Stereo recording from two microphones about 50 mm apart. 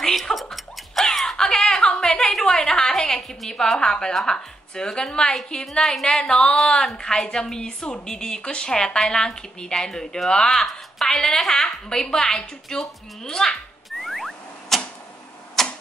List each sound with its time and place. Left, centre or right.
0.0 s a sound: centre
4.1 s speech: centre
5.7 s speech: centre
6.2 s speech: centre
13.8 s a sound: centre
15.6 s typewriter: centre